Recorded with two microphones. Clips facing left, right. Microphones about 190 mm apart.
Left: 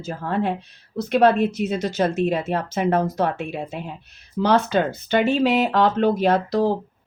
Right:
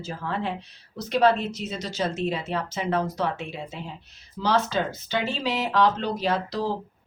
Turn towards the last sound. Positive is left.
turn(degrees=55)  # may be behind; listen again after turning